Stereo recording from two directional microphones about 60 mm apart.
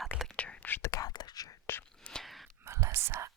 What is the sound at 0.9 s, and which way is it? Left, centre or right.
Whispering, left.